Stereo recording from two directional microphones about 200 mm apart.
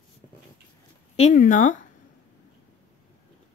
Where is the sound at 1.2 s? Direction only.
40° left (ahead or behind).